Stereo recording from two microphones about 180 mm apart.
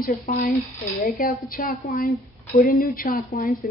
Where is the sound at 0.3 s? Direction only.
50° left (ahead or behind).